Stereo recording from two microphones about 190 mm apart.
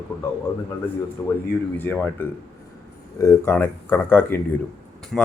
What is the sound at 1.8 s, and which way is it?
Speech, 10° left (ahead or behind).